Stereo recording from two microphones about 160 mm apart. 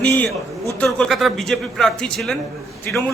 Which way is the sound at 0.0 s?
10° left (ahead or behind).